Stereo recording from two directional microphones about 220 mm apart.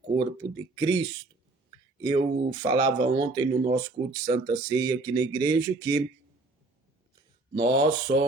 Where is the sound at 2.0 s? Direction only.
20° right (ahead or behind).